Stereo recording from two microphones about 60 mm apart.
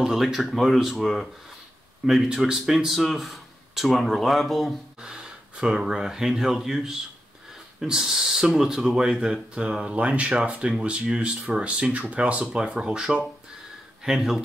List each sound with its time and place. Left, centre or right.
0.0 s speech: centre
2.3 s speech: centre
5.0 s speech: centre
12.6 s speech: centre